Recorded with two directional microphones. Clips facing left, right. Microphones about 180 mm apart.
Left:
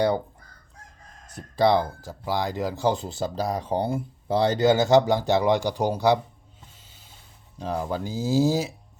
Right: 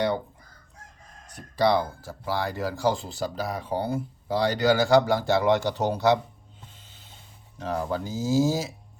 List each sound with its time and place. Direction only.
1.6 s speech: 20° left (ahead or behind)
7.6 s speech: 15° left (ahead or behind)